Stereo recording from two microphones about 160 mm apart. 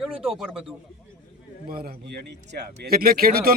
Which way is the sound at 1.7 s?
65° right (ahead or behind).